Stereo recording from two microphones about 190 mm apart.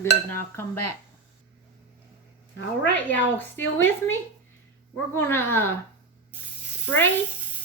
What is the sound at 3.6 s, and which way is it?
Speech, 90° left.